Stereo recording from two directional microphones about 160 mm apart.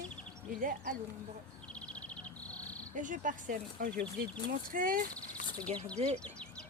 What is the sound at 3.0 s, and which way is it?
Speech, 55° right (ahead or behind).